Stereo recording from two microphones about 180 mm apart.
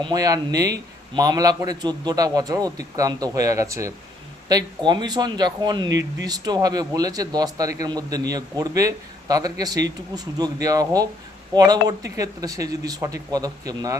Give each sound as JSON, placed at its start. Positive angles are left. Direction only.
{"t": 0.0, "sound": "speech", "side_deg": -20}
{"t": 5.9, "sound": "speech", "side_deg": -80}
{"t": 6.2, "sound": "speech", "side_deg": -20}